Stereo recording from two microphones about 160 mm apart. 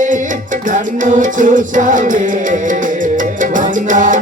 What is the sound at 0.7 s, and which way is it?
Music, 55° right (ahead or behind).